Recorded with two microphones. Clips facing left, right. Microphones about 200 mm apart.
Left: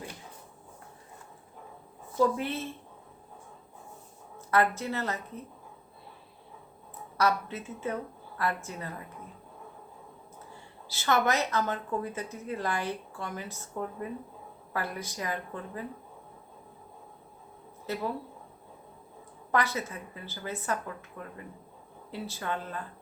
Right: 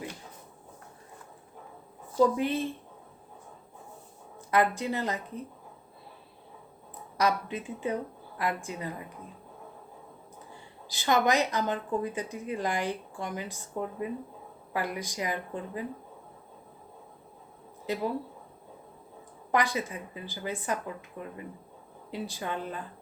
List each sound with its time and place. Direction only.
2.3 s a woman's voice: 15° right (ahead or behind)
4.4 s a woman's voice: 15° right (ahead or behind)
7.2 s a woman's voice: 15° right (ahead or behind)
10.8 s a woman's voice: 15° right (ahead or behind)
17.9 s a woman's voice: 15° right (ahead or behind)
19.5 s a woman's voice: 15° right (ahead or behind)